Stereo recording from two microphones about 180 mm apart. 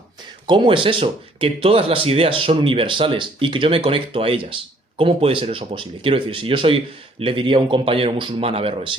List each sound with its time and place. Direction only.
0.4 s speech: 25° right (ahead or behind)